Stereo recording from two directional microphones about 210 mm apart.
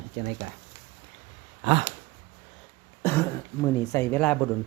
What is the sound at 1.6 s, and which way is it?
Speech, 30° right (ahead or behind).